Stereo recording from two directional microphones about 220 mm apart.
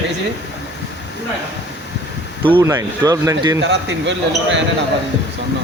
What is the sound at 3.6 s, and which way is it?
Speech, 55° right (ahead or behind).